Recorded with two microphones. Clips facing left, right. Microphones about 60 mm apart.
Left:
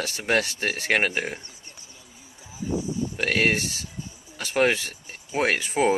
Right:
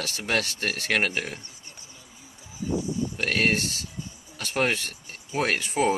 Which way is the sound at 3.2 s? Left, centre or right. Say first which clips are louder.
Left 2 dB; centre.